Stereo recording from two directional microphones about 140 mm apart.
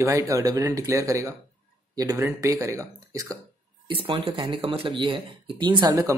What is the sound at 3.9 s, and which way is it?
Speech, 35° right (ahead or behind).